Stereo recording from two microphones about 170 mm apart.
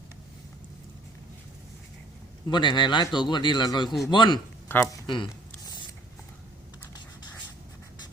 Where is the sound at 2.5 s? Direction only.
25° left (ahead or behind).